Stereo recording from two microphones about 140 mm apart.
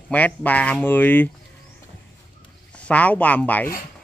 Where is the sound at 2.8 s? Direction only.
10° left (ahead or behind).